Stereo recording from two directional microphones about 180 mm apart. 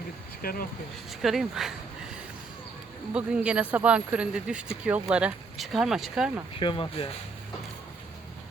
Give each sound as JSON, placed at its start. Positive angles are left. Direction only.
{"t": 0.4, "sound": "speech", "side_deg": 55}
{"t": 1.2, "sound": "speech", "side_deg": 0}
{"t": 3.1, "sound": "speech", "side_deg": -5}
{"t": 6.6, "sound": "speech", "side_deg": 30}